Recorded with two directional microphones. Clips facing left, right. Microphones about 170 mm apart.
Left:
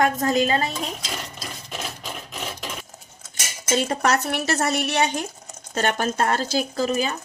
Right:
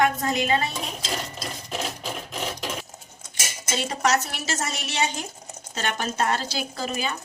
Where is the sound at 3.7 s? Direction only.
50° left (ahead or behind).